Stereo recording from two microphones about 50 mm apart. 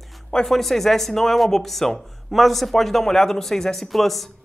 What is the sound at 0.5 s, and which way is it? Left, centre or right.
Speech, centre.